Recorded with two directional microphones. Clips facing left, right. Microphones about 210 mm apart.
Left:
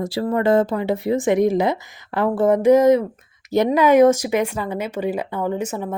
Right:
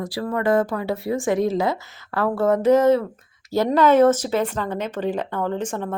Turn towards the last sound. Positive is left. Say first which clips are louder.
# left 2 dB
turn(degrees=10)  # may be behind; listen again after turning